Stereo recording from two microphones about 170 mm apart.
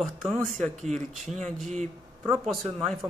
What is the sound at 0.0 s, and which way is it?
Speech, centre (ahead or behind).